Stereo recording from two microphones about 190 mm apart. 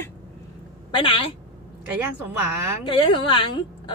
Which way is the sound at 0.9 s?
25° left (ahead or behind).